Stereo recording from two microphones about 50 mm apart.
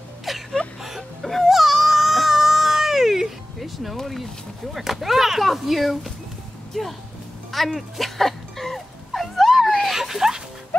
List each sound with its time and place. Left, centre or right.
0.2 s whimper: centre
1.4 s baby cry: centre
4.7 s speech: centre
7.5 s dog: centre
10.7 s music: left